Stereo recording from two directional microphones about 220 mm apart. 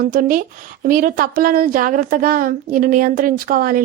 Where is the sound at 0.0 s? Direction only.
40° right (ahead or behind).